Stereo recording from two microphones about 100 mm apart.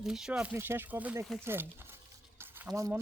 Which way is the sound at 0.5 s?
25° right (ahead or behind).